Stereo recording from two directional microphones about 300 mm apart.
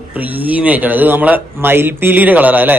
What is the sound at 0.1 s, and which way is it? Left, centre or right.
A man's voice, centre.